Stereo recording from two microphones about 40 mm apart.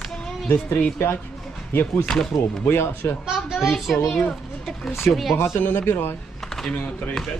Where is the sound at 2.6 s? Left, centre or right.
Left.